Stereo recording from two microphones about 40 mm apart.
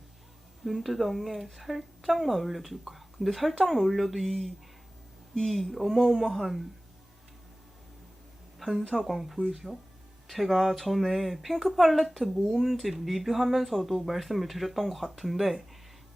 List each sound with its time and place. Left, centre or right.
0.6 s speech: centre
8.5 s a sound: centre
9.0 s speech: centre